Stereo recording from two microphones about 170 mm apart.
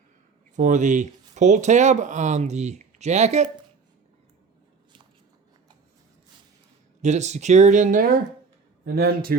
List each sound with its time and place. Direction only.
0.5 s speech: 45° right (ahead or behind)
7.0 s speech: 40° right (ahead or behind); by 9.3 s 65° right (ahead or behind)